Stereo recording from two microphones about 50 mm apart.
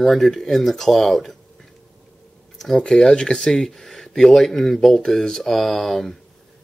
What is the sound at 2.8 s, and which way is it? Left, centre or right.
Speech, centre.